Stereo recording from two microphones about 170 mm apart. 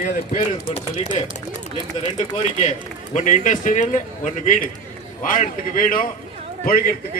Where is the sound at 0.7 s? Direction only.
35° left (ahead or behind).